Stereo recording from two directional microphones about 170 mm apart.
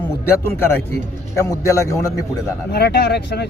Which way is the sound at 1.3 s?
20° left (ahead or behind).